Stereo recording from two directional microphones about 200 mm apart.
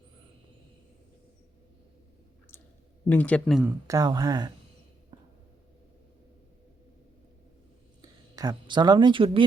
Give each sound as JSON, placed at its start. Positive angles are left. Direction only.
{"t": 3.1, "sound": "speech", "side_deg": 5}
{"t": 3.7, "sound": "speech", "side_deg": -15}
{"t": 5.1, "sound": "a sound", "side_deg": -20}
{"t": 8.4, "sound": "speech", "side_deg": -20}